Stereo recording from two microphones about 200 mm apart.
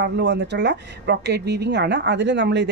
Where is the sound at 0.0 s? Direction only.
60° right (ahead or behind).